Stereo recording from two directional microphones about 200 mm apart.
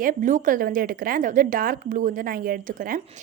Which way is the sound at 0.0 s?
40° right (ahead or behind).